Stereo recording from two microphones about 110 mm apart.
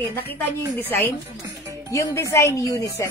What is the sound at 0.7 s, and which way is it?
Speech, 20° left (ahead or behind).